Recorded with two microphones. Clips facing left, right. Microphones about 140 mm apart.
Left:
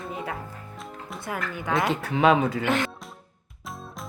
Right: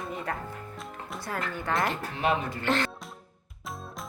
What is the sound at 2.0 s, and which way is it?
Speech, 80° left.